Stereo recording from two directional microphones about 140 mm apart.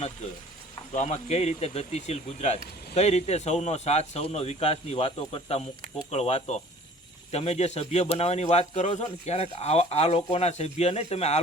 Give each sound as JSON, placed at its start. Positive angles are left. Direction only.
{"t": 0.9, "sound": "a man's voice", "side_deg": 55}